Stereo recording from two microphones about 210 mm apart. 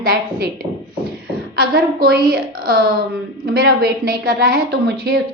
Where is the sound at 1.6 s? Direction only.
45° right (ahead or behind).